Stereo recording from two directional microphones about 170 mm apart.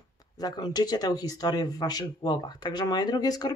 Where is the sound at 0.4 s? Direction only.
25° left (ahead or behind).